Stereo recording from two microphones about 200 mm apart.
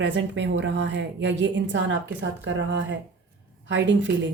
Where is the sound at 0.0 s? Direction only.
60° right (ahead or behind).